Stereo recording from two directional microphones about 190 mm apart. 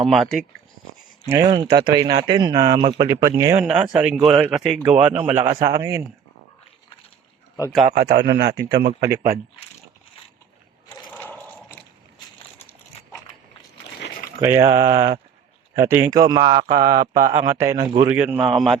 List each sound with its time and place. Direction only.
0.0 s speech: centre (ahead or behind)
1.3 s speech: 20° right (ahead or behind)
7.9 s a man's voice: 55° right (ahead or behind)
11.1 s sewing machine: 10° left (ahead or behind)
14.6 s speech: 25° right (ahead or behind); by 18.8 s centre (ahead or behind)